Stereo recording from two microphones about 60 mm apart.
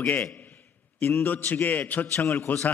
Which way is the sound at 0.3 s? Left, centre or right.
Left.